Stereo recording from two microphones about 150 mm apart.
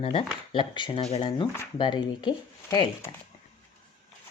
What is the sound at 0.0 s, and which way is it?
Speech, 35° left (ahead or behind).